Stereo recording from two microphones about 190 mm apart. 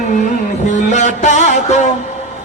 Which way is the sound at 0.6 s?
40° left (ahead or behind).